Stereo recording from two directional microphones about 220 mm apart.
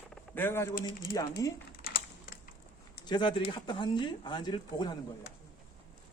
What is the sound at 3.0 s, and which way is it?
Speech, 20° left (ahead or behind).